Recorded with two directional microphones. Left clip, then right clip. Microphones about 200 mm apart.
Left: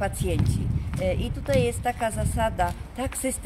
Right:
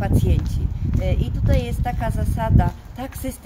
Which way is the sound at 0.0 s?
20° left (ahead or behind).